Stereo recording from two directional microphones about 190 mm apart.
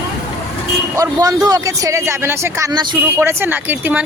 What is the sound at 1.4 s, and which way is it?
Speech, 20° right (ahead or behind).